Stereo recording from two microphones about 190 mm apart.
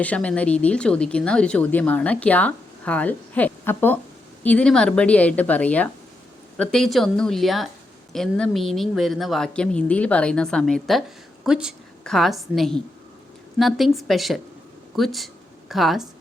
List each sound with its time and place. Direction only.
0.0 s a woman's voice: 5° left (ahead or behind)